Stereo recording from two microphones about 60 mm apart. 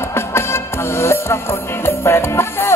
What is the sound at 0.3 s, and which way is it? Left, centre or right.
Music, left.